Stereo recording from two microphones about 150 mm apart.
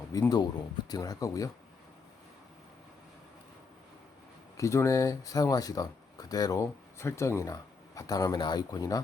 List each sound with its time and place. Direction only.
0.1 s speech: 25° left (ahead or behind)
4.5 s speech: 20° left (ahead or behind)